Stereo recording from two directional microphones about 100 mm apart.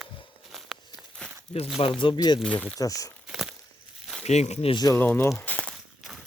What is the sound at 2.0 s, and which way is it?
Speech, 50° left (ahead or behind).